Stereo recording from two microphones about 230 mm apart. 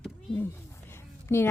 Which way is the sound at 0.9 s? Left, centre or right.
Centre.